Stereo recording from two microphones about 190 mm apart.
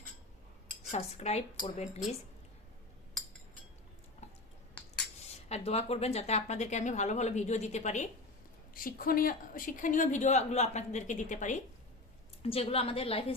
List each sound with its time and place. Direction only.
0.9 s a woman's voice: 35° left (ahead or behind)
4.2 s finger snapping: 35° left (ahead or behind)
5.3 s a woman's voice: 35° left (ahead or behind)
12.4 s a woman's voice: 30° left (ahead or behind)